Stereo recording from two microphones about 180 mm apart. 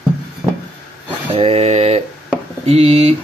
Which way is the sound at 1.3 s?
35° right (ahead or behind).